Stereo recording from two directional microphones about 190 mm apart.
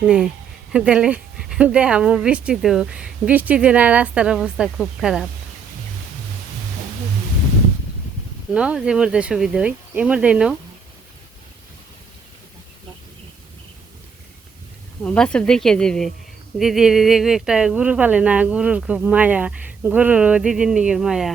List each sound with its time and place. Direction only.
0.0 s speech: 5° right (ahead or behind)
8.5 s speech: 5° right (ahead or behind)
15.0 s speech: 5° left (ahead or behind)